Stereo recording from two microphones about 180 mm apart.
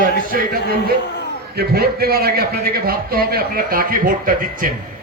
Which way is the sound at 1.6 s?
60° right (ahead or behind).